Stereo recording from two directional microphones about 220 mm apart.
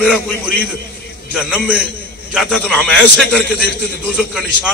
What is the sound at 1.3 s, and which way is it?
A man's voice, 5° left (ahead or behind).